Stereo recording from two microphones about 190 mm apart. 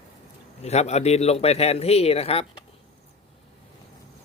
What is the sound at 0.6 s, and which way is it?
A man's voice, 35° left (ahead or behind).